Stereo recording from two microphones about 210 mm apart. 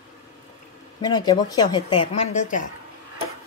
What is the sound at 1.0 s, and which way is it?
Speech, 20° left (ahead or behind).